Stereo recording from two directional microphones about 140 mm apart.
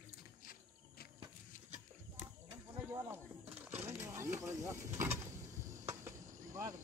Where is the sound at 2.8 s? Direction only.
15° right (ahead or behind).